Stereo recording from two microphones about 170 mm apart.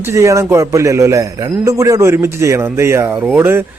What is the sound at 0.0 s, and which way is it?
Speech, 15° right (ahead or behind).